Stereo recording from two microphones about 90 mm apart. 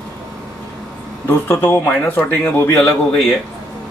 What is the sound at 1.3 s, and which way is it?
Speech, 25° left (ahead or behind).